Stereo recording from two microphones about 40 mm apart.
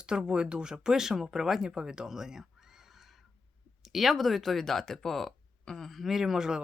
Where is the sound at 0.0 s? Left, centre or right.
Right.